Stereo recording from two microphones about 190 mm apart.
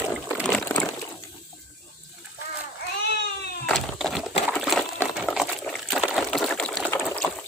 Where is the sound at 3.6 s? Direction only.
Centre (ahead or behind).